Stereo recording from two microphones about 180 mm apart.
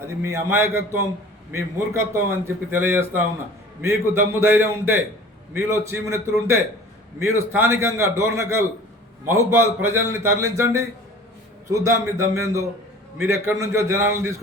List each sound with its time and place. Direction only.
0.0 s a man's voice: 15° right (ahead or behind)